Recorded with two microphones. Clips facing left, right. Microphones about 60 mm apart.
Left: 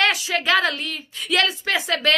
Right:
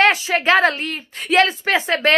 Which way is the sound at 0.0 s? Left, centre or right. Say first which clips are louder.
Right 5 dB; right.